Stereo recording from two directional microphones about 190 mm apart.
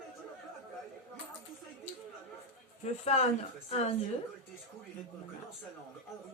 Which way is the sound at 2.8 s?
35° left (ahead or behind).